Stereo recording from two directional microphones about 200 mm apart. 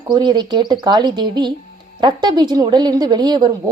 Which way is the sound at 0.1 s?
20° right (ahead or behind).